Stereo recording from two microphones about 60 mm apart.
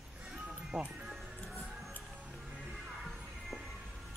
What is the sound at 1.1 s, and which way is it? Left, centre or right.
Music, centre.